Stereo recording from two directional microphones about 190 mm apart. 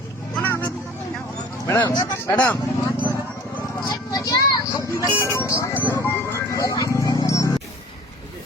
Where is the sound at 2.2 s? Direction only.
10° left (ahead or behind).